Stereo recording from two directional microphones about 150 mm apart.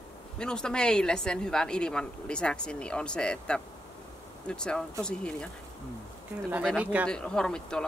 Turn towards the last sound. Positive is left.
turn(degrees=5)  # may be behind; listen again after turning